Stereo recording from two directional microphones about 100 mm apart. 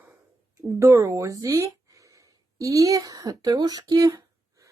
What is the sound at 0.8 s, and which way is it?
Speech, 25° right (ahead or behind).